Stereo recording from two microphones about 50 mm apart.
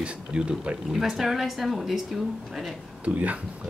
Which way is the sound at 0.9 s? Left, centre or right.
Centre.